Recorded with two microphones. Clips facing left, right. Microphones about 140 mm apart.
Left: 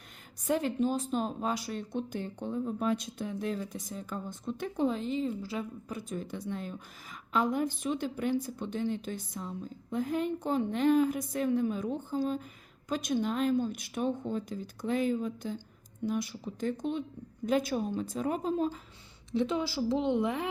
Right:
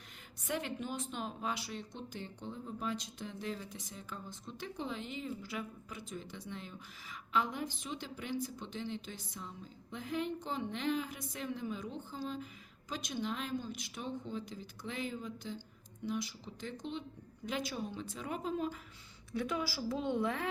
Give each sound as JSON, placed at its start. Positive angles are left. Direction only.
{"t": 0.4, "sound": "speech", "side_deg": 35}
{"t": 6.0, "sound": "a woman's voice", "side_deg": 50}